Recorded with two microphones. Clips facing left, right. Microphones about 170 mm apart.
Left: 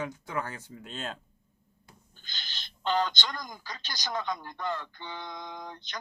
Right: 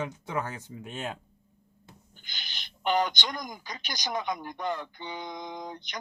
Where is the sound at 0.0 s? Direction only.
20° right (ahead or behind).